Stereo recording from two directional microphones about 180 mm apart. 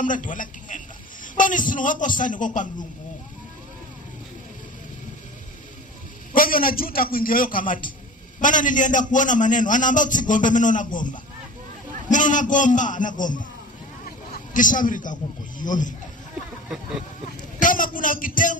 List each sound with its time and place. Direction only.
0.0 s a man's voice: 45° left (ahead or behind)
6.3 s a man's voice: 50° left (ahead or behind)
12.1 s a man's voice: 45° left (ahead or behind)
17.6 s a sound: 50° left (ahead or behind)